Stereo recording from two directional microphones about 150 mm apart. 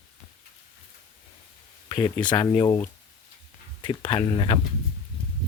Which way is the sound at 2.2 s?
30° left (ahead or behind).